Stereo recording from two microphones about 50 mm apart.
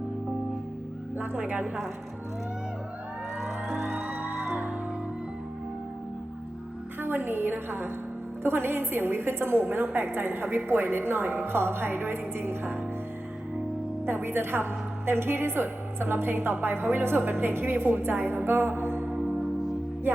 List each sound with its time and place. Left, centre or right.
1.2 s speech: right
3.9 s music: centre
7.0 s a woman's voice: right
14.0 s a woman's voice: right
19.3 s music: centre